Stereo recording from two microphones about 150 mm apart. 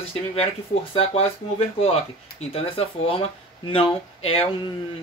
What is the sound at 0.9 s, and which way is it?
Speech, 40° left (ahead or behind).